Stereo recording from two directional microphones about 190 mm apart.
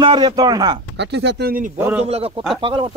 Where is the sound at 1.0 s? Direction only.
65° right (ahead or behind).